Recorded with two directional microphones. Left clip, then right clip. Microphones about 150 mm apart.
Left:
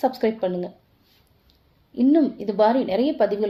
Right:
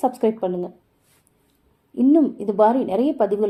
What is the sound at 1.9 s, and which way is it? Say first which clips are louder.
A woman's voice: right 2 dB; 40° right (ahead or behind).